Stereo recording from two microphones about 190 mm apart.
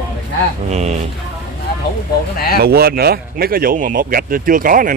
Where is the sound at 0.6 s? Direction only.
35° right (ahead or behind).